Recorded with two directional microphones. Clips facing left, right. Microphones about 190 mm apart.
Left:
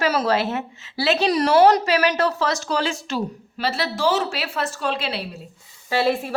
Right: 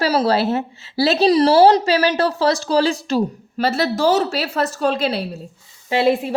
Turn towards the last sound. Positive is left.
turn(degrees=-20)  # may be behind; listen again after turning